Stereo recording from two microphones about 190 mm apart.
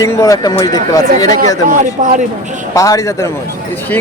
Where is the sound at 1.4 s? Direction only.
45° right (ahead or behind).